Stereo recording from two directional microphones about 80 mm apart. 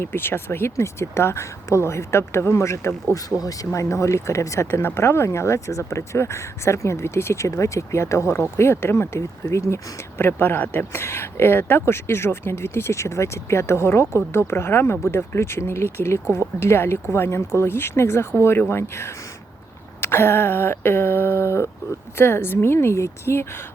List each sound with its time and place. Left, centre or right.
0.0 s speech: left
3.2 s speech: left
20.0 s a sound: left
22.2 s speech: left